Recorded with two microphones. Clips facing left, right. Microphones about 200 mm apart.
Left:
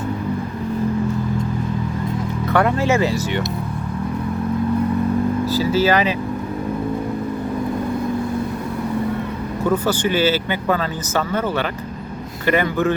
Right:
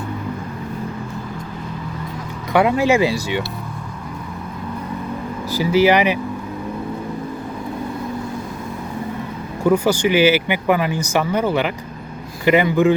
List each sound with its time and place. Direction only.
2.5 s speech: 15° right (ahead or behind)
5.5 s speech: 15° right (ahead or behind)
9.6 s speech: 10° right (ahead or behind)